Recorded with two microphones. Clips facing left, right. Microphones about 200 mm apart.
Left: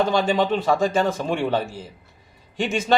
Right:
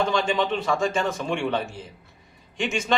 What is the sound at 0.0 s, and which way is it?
Speech, 35° left (ahead or behind).